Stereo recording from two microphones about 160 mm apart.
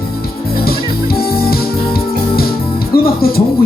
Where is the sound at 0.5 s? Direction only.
70° left (ahead or behind).